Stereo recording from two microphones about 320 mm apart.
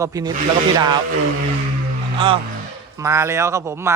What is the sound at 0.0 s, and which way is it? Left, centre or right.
Speech, centre.